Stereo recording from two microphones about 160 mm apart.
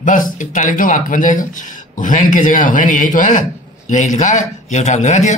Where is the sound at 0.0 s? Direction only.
55° left (ahead or behind).